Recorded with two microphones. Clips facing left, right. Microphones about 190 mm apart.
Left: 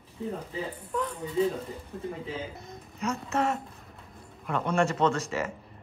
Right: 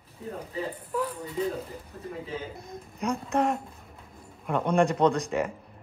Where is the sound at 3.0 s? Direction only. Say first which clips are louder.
Right 2 dB; 15° right (ahead or behind).